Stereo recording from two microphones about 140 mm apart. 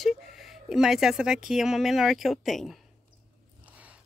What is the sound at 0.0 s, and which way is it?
Speech, centre (ahead or behind).